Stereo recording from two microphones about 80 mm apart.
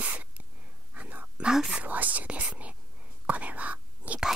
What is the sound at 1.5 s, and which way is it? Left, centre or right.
Speech, centre.